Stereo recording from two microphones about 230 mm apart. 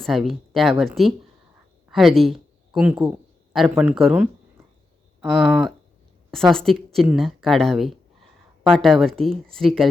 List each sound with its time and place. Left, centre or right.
0.0 s a woman's voice: centre